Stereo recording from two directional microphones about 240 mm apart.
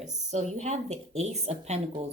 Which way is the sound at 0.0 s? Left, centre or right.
Right.